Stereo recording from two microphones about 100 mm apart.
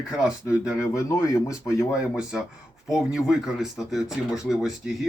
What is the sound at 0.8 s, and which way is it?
Speech, 30° left (ahead or behind).